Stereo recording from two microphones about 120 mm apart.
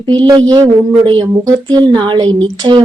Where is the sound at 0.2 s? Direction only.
35° right (ahead or behind).